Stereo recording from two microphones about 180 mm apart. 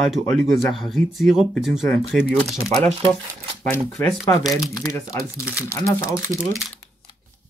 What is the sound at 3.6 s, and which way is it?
Speech, 5° left (ahead or behind).